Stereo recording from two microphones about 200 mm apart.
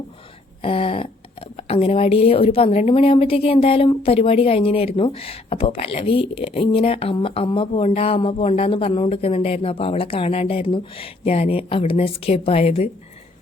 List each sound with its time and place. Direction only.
0.6 s speech: 25° left (ahead or behind)